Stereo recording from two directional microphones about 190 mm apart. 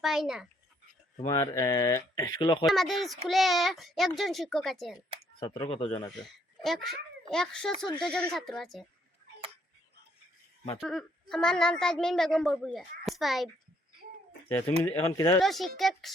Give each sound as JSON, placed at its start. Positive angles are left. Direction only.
{"t": 0.0, "sound": "a woman's voice", "side_deg": 0}
{"t": 1.3, "sound": "speech", "side_deg": 20}
{"t": 2.6, "sound": "a woman's voice", "side_deg": 0}
{"t": 5.4, "sound": "speech", "side_deg": 25}
{"t": 6.1, "sound": "a sound", "side_deg": 0}
{"t": 6.8, "sound": "a woman's voice", "side_deg": 5}
{"t": 10.8, "sound": "a woman's voice", "side_deg": 0}
{"t": 14.8, "sound": "a woman's voice", "side_deg": 10}